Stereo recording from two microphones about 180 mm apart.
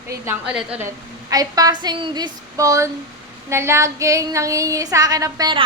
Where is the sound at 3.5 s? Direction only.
15° right (ahead or behind).